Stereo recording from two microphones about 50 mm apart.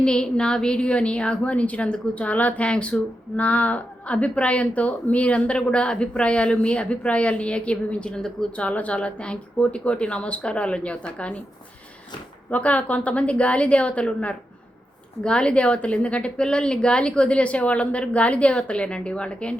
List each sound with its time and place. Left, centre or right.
0.0 s a woman's voice: centre
8.5 s a woman's voice: left
12.5 s a woman's voice: left